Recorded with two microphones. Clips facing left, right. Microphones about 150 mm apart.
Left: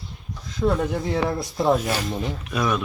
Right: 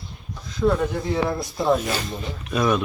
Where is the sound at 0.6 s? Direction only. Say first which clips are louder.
Right 2 dB; 20° left (ahead or behind).